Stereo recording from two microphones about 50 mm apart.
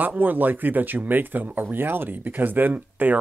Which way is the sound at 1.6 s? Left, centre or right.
Right.